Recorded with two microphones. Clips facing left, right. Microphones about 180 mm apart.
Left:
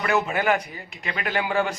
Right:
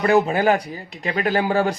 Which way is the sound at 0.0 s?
35° right (ahead or behind).